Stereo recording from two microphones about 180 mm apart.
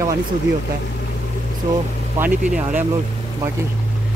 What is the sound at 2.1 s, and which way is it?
Speech, 10° right (ahead or behind).